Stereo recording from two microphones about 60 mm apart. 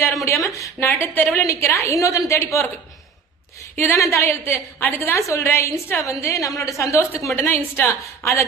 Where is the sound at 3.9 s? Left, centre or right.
Left.